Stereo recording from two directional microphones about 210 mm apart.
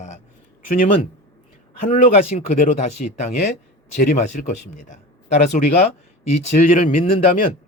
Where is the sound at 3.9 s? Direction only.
35° left (ahead or behind).